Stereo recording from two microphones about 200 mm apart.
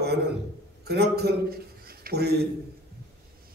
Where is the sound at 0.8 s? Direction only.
55° right (ahead or behind).